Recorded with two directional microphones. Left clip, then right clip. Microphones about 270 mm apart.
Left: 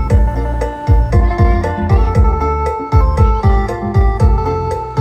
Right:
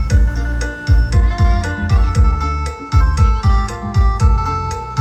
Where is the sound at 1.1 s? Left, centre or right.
Left.